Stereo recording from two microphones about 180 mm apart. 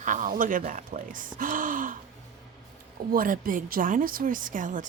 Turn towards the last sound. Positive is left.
turn(degrees=-45)  # may be behind; listen again after turning